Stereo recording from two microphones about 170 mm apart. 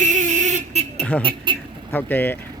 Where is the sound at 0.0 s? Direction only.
45° right (ahead or behind).